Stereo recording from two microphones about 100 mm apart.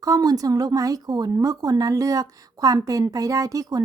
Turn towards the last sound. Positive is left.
turn(degrees=-35)  # may be behind; listen again after turning